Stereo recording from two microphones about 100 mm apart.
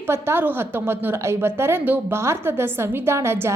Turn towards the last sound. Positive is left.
turn(degrees=-25)  # may be behind; listen again after turning